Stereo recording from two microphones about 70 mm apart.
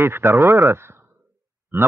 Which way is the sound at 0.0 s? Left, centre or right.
Right.